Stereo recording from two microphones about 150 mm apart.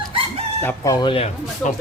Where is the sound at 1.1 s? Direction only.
45° left (ahead or behind).